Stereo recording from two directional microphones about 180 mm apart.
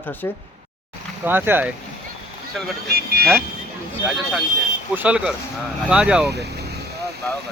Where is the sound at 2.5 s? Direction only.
Centre (ahead or behind).